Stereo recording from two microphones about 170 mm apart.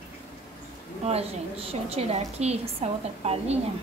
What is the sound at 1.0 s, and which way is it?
A woman's voice, 35° right (ahead or behind).